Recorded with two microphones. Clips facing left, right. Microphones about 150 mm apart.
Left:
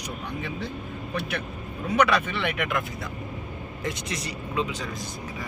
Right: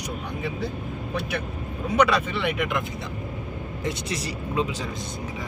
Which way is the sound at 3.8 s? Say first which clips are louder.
Right 2 dB; 30° right (ahead or behind).